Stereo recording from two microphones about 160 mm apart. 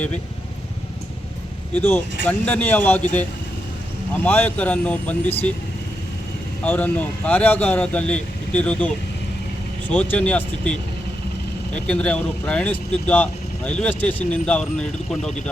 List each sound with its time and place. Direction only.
1.7 s speech: 15° left (ahead or behind)
4.1 s speech: 10° left (ahead or behind)
6.7 s speech: 10° left (ahead or behind)
9.9 s speech: 10° left (ahead or behind)